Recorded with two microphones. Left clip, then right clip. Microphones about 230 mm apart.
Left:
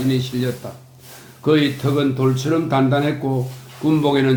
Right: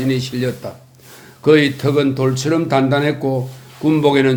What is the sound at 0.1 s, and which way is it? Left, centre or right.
Speech, right.